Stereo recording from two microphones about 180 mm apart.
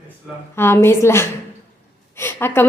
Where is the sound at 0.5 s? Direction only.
15° left (ahead or behind).